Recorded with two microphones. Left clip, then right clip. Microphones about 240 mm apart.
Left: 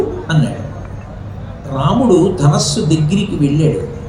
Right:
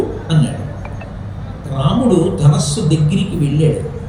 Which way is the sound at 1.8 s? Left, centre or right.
Centre.